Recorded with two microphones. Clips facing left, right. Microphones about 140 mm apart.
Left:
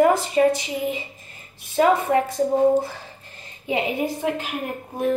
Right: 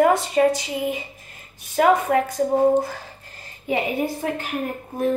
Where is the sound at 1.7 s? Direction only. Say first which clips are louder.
Right 1 dB; 25° left (ahead or behind).